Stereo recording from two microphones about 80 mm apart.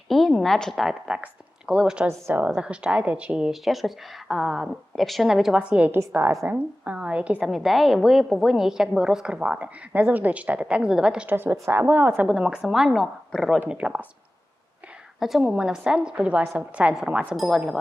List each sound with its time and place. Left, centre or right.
0.1 s a woman's voice: centre
1.0 s speech: centre
2.0 s a woman's voice: right
2.6 s a woman's voice: centre
6.4 s a woman's voice: right
6.8 s a sound: centre
7.4 s a woman's voice: centre
11.3 s a woman's voice: right
12.3 s a woman's voice: centre
13.7 s a woman's voice: centre
15.2 s a woman's voice: centre
17.3 s a woman's voice: centre